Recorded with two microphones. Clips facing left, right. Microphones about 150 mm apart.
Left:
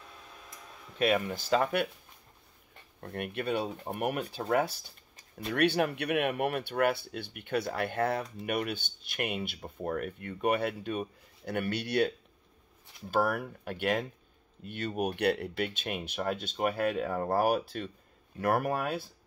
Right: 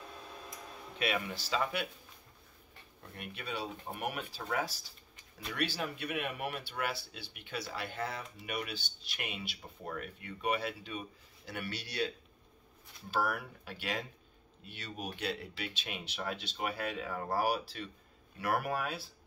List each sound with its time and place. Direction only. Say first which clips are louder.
0.9 s speech: left 7 dB; 45° left (ahead or behind)
3.0 s speech: left 11 dB; 60° left (ahead or behind)
13.1 s speech: left 6 dB; 50° left (ahead or behind)